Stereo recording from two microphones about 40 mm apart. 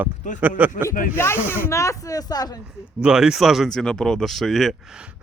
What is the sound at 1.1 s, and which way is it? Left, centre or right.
Speech, left.